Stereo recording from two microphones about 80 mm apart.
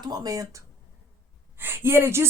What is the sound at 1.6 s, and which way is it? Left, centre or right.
Speech, right.